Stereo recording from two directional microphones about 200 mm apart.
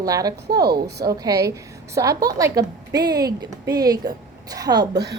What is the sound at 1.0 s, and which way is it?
A woman's voice, 20° right (ahead or behind).